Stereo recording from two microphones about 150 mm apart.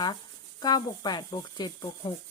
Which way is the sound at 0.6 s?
30° left (ahead or behind).